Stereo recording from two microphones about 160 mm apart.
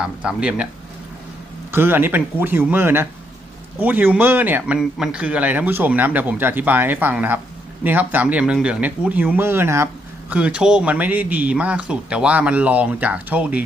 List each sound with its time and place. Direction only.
0.0 s speech: 5° right (ahead or behind)
1.7 s speech: 15° right (ahead or behind)